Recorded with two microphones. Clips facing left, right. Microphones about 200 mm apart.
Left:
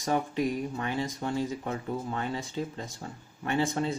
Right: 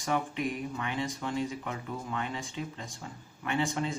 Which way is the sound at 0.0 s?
35° left (ahead or behind).